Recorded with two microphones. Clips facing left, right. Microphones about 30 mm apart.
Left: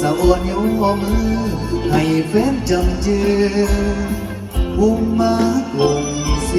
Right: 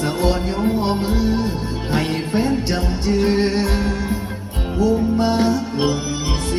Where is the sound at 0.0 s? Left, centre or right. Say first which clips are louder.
Left 4 dB; right.